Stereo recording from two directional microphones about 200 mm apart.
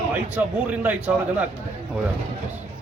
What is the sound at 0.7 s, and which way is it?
Speech, 10° right (ahead or behind).